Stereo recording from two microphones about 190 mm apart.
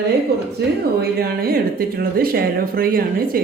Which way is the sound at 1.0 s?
55° right (ahead or behind).